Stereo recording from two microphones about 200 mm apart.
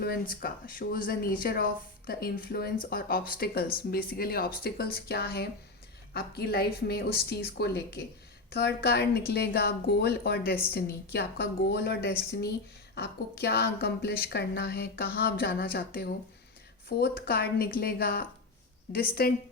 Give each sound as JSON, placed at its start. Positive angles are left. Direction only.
{"t": 0.0, "sound": "a woman's voice", "side_deg": 50}